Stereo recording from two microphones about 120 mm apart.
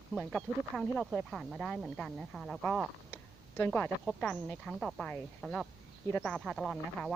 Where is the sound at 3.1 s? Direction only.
20° left (ahead or behind).